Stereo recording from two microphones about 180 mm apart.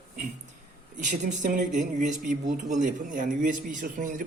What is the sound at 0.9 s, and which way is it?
Speech, 45° right (ahead or behind).